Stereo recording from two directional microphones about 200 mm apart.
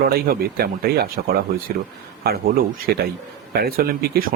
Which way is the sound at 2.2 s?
50° right (ahead or behind).